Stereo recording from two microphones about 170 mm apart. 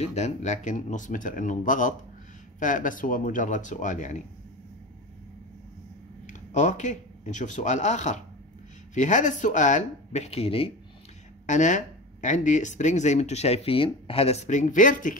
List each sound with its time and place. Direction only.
0.0 s speech: 40° left (ahead or behind)
6.2 s speech: 45° left (ahead or behind)
11.4 s speech: 45° left (ahead or behind)